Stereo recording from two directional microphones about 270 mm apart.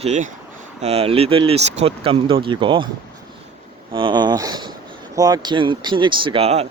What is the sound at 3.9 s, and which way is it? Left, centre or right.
Speech, centre.